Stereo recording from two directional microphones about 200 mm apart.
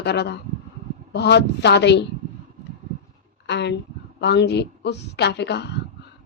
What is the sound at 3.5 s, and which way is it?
A woman's voice, 60° left (ahead or behind).